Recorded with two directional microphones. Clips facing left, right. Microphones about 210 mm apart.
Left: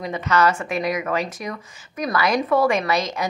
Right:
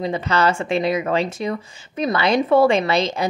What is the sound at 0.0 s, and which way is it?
A woman's voice, 30° right (ahead or behind).